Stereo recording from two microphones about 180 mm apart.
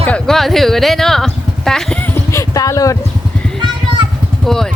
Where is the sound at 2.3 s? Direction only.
15° left (ahead or behind).